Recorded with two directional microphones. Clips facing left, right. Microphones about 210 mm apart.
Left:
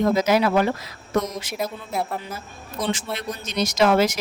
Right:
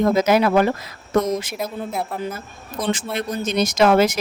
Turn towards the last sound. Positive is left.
turn(degrees=-55)  # may be behind; listen again after turning